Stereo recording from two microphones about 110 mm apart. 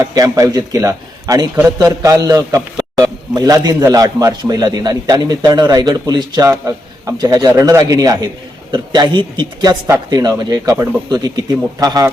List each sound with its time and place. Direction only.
0.0 s a man's voice: 30° right (ahead or behind)